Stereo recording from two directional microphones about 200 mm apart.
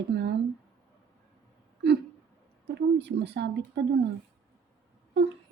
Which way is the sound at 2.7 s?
60° right (ahead or behind).